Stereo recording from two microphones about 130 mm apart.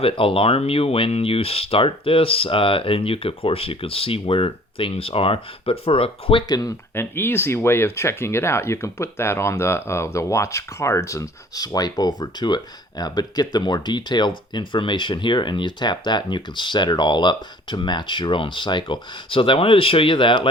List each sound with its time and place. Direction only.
0.0 s speech: 45° left (ahead or behind)
6.5 s speech: 30° left (ahead or behind)
6.9 s speech: 15° left (ahead or behind); by 20.5 s 40° left (ahead or behind)